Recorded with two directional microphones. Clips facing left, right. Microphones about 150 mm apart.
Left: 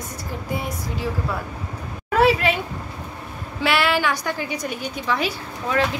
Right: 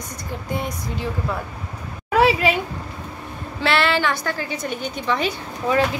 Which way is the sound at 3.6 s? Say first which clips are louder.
Right 1 dB; 10° left (ahead or behind).